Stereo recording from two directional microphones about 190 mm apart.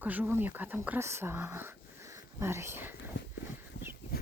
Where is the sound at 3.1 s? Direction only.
80° left.